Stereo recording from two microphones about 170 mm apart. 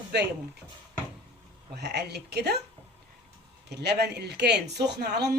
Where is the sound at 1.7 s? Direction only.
75° right (ahead or behind).